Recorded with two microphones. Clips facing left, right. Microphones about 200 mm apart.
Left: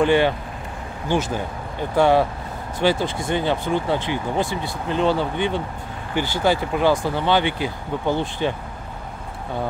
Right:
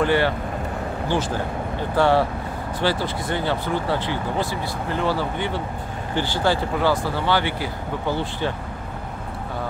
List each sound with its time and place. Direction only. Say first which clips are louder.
0.0 s speech: left 3 dB; 20° left (ahead or behind)
2.0 s speech: left 2 dB; 15° left (ahead or behind)